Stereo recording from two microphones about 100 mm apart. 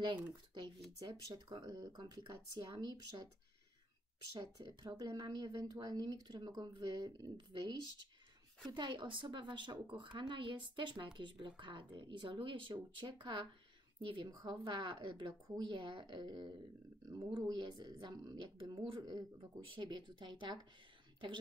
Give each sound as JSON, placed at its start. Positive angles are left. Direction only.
{"t": 0.1, "sound": "speech", "side_deg": -45}
{"t": 4.3, "sound": "speech", "side_deg": -40}
{"t": 8.7, "sound": "speech", "side_deg": -50}
{"t": 14.3, "sound": "speech", "side_deg": -40}
{"t": 15.2, "sound": "speech", "side_deg": -40}